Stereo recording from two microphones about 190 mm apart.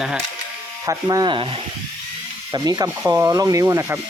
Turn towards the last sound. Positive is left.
turn(degrees=-15)  # may be behind; listen again after turning